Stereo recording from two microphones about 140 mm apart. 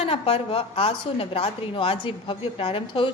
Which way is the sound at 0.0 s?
45° left (ahead or behind).